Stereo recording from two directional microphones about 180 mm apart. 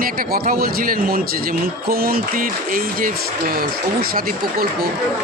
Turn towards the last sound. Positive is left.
turn(degrees=-55)  # may be behind; listen again after turning